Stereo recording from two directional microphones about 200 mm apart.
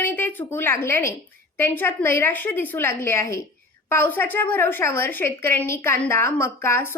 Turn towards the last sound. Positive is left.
turn(degrees=10)  # may be behind; listen again after turning